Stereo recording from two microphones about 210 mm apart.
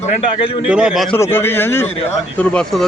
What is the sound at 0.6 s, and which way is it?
Speech, 5° right (ahead or behind).